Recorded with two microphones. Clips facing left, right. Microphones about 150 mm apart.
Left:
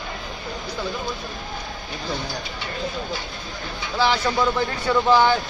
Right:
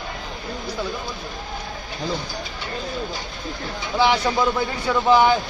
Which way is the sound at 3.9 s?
15° right (ahead or behind).